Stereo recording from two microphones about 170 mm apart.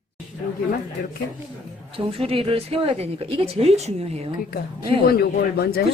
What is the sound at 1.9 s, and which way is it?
A woman's voice, 35° right (ahead or behind).